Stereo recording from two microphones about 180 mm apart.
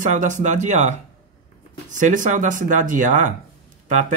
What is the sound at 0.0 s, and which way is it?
Speech, 45° right (ahead or behind).